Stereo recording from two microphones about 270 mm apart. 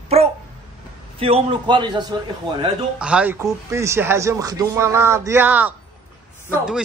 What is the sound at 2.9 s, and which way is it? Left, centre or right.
A man's voice, centre.